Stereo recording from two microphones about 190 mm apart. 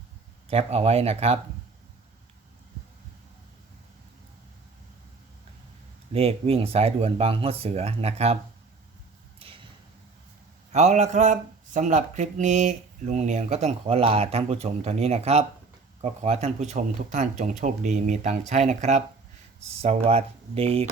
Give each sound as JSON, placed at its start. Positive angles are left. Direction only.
{"t": 0.5, "sound": "speech", "side_deg": -35}
{"t": 6.1, "sound": "speech", "side_deg": -30}
{"t": 10.7, "sound": "speech", "side_deg": -40}